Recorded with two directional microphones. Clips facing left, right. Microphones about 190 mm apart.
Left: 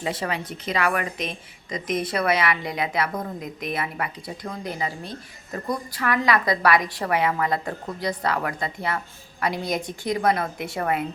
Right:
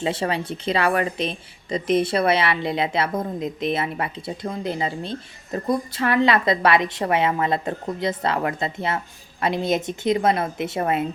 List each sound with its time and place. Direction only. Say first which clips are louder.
0.0 s speech: right 4 dB; 30° right (ahead or behind)